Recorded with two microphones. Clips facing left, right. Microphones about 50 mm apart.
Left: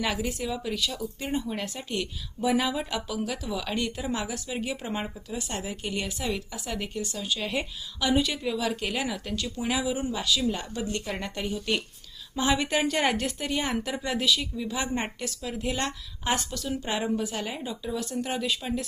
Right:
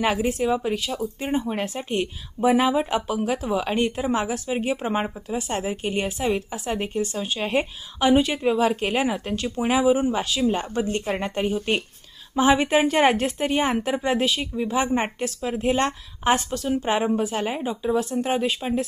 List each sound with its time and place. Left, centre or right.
0.0 s speech: right